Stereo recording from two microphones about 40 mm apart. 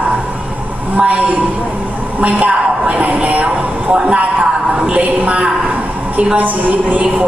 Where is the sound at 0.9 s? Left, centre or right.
Right.